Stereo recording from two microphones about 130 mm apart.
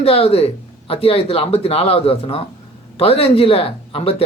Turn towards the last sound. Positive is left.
turn(degrees=45)  # may be behind; listen again after turning